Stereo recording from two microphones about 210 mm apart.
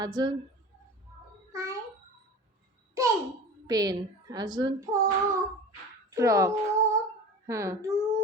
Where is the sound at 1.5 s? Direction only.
15° right (ahead or behind).